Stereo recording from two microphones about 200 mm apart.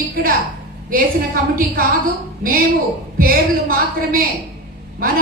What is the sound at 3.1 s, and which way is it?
A woman's voice, 45° right (ahead or behind).